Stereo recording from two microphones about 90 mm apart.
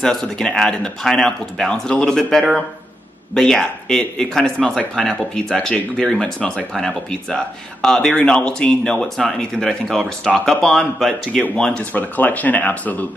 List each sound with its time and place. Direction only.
0.0 s speech: 5° left (ahead or behind)